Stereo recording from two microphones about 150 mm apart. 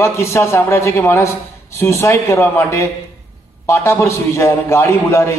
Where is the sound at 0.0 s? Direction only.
20° left (ahead or behind).